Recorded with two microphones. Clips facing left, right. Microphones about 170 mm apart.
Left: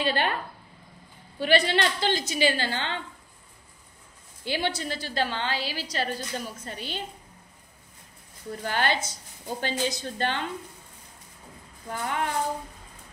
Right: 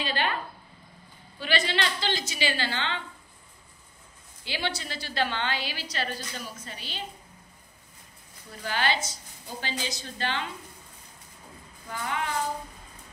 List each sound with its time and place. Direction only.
0.0 s a woman's voice: 50° left (ahead or behind)
1.4 s a woman's voice: 50° left (ahead or behind)
4.5 s a woman's voice: 50° left (ahead or behind)
8.6 s a woman's voice: 50° left (ahead or behind)
12.0 s a woman's voice: 50° left (ahead or behind)